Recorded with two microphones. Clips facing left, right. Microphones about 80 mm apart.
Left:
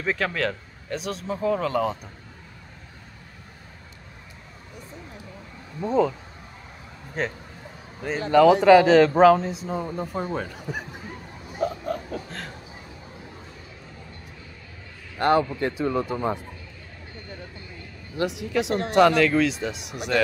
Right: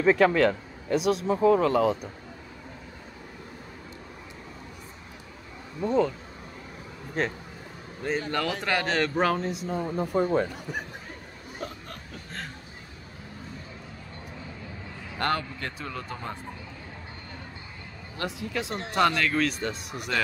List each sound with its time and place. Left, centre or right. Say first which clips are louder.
0.0 s speech: right 6 dB; centre
5.8 s speech: left 2 dB; centre
7.2 s speech: even; centre
11.6 s a sound: left 13 dB; centre
15.1 s speech: left 8 dB; centre
18.2 s speech: left 7 dB; left
18.5 s speech: left 8 dB; centre